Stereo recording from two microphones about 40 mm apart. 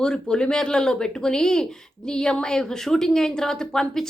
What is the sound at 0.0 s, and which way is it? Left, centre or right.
Speech, centre.